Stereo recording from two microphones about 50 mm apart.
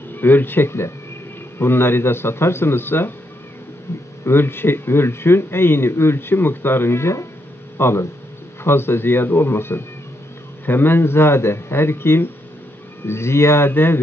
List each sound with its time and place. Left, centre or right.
0.1 s speech: left
4.2 s speech: left